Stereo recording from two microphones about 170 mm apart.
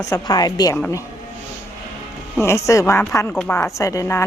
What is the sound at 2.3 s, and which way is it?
Speech, 15° left (ahead or behind).